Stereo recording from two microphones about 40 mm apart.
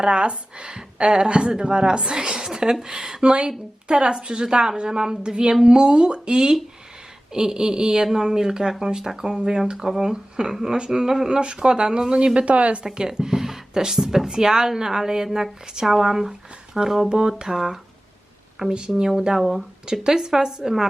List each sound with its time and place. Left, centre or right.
0.0 s a woman's voice: right
12.3 s a woman's voice: right
12.8 s speech: centre
19.4 s speech: centre
19.9 s speech: centre